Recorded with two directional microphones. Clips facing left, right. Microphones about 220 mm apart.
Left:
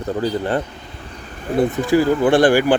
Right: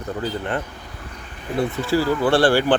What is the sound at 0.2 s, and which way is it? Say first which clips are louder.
Speech: left 5 dB; 35° left (ahead or behind).